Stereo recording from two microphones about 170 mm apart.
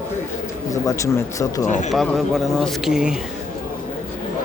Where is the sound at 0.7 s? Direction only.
20° left (ahead or behind).